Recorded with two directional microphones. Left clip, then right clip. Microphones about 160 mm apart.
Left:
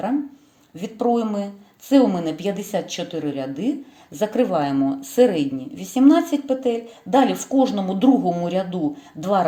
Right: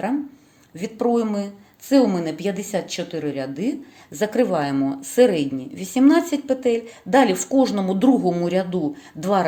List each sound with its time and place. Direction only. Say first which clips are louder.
0.8 s a woman's voice: even; 15° right (ahead or behind)